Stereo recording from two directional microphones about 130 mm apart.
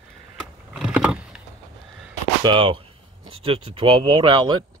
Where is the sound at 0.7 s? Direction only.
5° right (ahead or behind).